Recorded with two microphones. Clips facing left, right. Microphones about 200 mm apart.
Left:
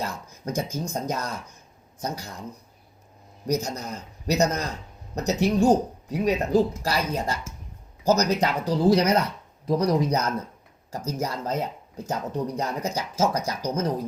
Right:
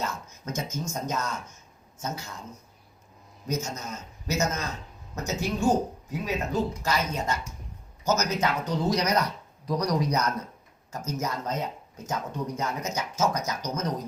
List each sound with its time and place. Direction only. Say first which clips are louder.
0.0 s speech: left 2 dB; 35° left (ahead or behind)
3.4 s speech: left 5 dB; 35° left (ahead or behind)